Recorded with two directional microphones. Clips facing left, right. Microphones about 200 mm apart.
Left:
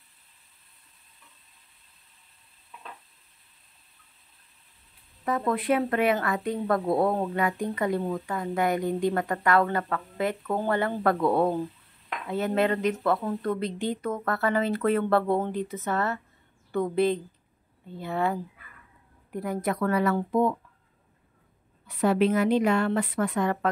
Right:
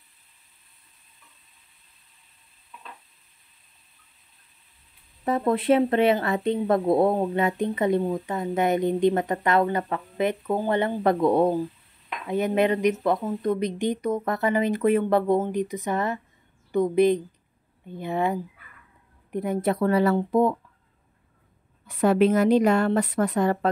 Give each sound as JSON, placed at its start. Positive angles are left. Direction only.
{"t": 5.2, "sound": "a woman's voice", "side_deg": -30}
{"t": 21.8, "sound": "a woman's voice", "side_deg": -45}